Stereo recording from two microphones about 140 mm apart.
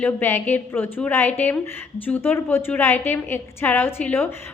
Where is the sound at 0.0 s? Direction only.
15° left (ahead or behind).